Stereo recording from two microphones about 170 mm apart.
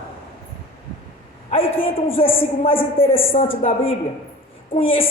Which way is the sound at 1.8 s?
35° left (ahead or behind).